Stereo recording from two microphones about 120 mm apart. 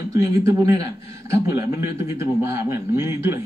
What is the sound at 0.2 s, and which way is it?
A man's voice, 25° right (ahead or behind).